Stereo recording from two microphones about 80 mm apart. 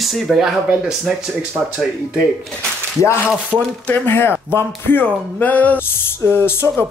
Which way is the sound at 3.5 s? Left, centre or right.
Right.